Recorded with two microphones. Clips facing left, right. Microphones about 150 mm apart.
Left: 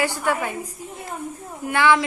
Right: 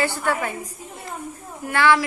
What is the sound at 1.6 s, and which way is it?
Speech, 15° left (ahead or behind).